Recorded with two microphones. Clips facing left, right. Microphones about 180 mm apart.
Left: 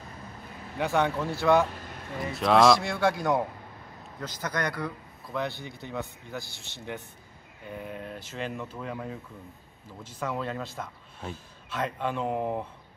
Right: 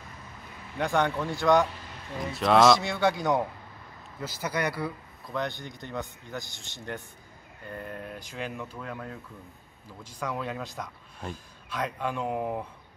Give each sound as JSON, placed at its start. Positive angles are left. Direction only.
{"t": 0.7, "sound": "a man's voice", "side_deg": 5}
{"t": 5.2, "sound": "speech", "side_deg": 5}
{"t": 7.6, "sound": "speech", "side_deg": 5}
{"t": 8.7, "sound": "speech", "side_deg": 5}